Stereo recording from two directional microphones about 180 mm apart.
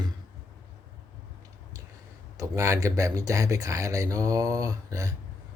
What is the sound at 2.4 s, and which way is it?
Speech, 15° right (ahead or behind).